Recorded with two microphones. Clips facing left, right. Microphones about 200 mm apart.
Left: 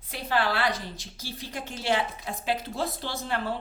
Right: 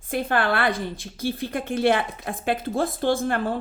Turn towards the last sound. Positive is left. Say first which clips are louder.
# right 8 dB
turn(degrees=-50)  # may be behind; listen again after turning